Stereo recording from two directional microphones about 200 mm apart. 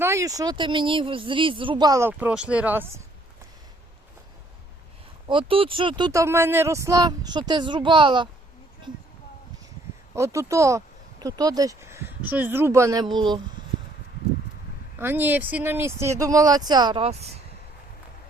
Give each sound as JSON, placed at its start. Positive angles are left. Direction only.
{"t": 0.0, "sound": "speech", "side_deg": -15}
{"t": 5.3, "sound": "speech", "side_deg": -25}
{"t": 10.2, "sound": "speech", "side_deg": -15}
{"t": 14.9, "sound": "speech", "side_deg": -10}